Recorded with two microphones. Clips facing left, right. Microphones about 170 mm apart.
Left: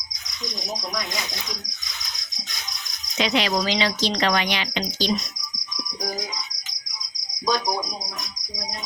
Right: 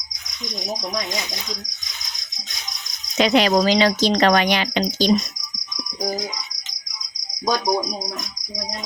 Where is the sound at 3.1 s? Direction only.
45° right (ahead or behind).